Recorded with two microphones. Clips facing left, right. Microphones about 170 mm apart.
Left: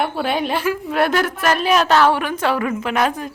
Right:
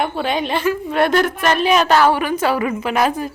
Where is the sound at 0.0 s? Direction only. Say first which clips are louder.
Even; 5° left (ahead or behind).